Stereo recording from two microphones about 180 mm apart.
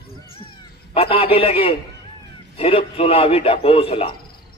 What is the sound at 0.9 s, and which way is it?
A man's voice, 30° left (ahead or behind).